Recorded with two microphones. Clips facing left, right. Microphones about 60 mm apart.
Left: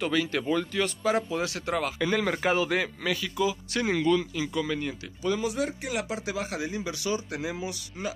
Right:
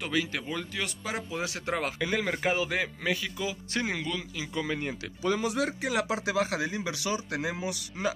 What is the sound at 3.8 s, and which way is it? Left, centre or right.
Speech, centre.